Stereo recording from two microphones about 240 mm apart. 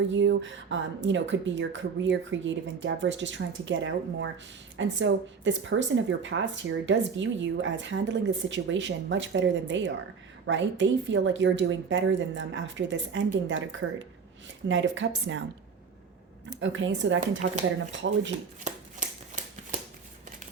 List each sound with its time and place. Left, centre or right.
0.1 s speech: right
16.6 s speech: right
17.4 s speech: right
18.0 s speech: right
18.7 s shuffling cards: right